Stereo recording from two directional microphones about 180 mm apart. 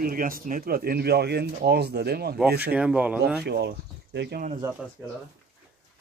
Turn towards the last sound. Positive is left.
turn(degrees=-15)  # may be behind; listen again after turning